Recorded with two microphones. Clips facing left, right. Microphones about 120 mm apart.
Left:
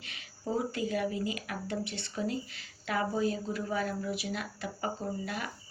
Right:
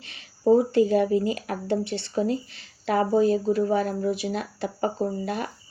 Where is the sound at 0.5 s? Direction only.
30° right (ahead or behind).